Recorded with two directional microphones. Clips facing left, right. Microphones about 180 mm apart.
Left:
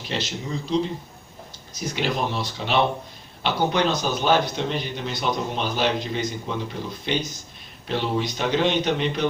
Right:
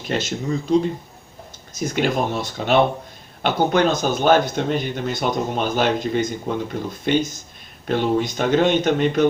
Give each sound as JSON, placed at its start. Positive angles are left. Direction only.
{"t": 0.1, "sound": "a man's voice", "side_deg": -50}